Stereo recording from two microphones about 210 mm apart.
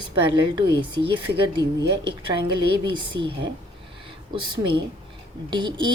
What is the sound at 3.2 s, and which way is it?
Speech, 60° right (ahead or behind).